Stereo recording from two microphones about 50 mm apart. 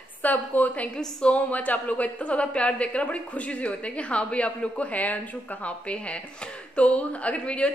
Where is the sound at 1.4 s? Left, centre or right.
Left.